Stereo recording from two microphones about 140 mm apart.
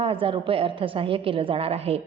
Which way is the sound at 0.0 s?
40° right (ahead or behind).